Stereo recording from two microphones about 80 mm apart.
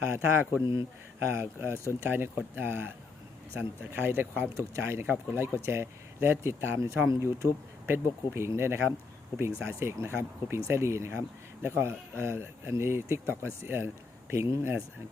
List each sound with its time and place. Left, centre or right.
0.1 s speech: right
0.6 s speech: left
1.2 s speech: right